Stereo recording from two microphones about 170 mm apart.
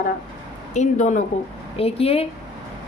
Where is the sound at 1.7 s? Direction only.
35° left (ahead or behind).